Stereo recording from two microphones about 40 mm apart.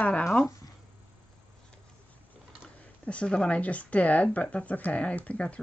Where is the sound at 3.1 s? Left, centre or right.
Left.